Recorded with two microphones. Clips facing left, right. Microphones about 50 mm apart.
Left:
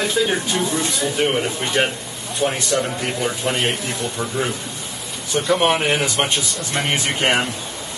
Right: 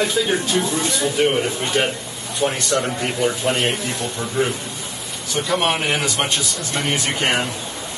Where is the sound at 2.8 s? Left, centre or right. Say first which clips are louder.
Right 1 dB; centre.